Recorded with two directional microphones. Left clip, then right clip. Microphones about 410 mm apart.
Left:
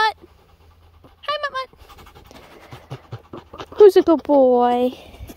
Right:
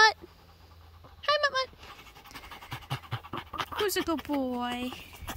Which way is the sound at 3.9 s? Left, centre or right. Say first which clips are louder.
Left 17 dB; centre.